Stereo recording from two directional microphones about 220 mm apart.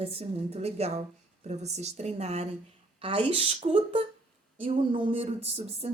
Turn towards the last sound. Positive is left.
turn(degrees=-25)  # may be behind; listen again after turning